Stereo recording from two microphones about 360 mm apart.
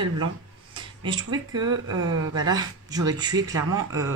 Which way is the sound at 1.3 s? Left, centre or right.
Right.